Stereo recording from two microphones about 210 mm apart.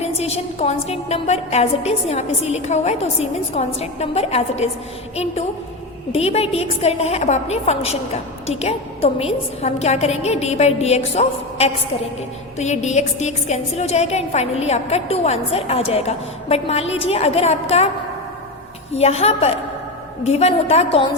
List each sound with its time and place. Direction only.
0.0 s a woman's voice: 30° left (ahead or behind)
18.9 s a woman's voice: 30° left (ahead or behind)